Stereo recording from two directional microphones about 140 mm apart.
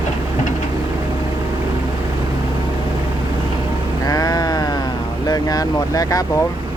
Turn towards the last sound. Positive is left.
turn(degrees=25)  # may be behind; listen again after turning